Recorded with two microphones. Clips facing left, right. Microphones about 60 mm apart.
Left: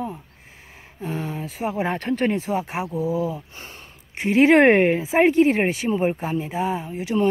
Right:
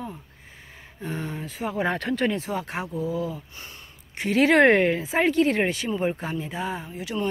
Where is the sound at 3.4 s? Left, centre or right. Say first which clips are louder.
Left 3 dB; left.